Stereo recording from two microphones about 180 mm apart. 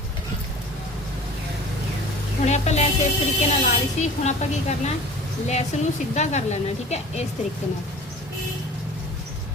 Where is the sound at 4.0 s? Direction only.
40° left (ahead or behind).